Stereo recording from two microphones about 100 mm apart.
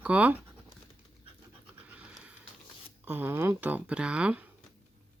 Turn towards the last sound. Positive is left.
turn(degrees=-10)  # may be behind; listen again after turning